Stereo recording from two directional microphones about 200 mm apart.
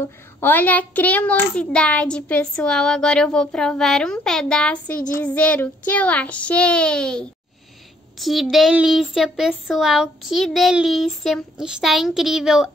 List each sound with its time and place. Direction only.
0.0 s a child's voice: 10° left (ahead or behind)